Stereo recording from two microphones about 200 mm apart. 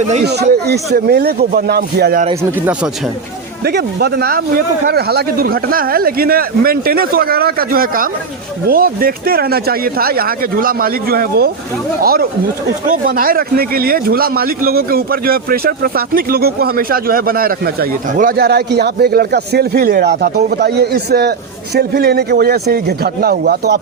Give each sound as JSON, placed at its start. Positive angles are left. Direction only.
{"t": 0.7, "sound": "speech", "side_deg": -50}
{"t": 2.4, "sound": "speech", "side_deg": -10}
{"t": 3.6, "sound": "speech", "side_deg": -55}